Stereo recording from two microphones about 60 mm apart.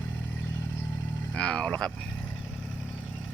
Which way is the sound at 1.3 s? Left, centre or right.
Centre.